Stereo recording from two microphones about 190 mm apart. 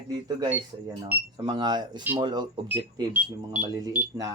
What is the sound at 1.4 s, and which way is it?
Speech, 25° right (ahead or behind).